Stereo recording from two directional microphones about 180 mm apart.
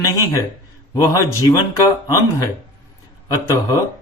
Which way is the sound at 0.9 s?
20° left (ahead or behind).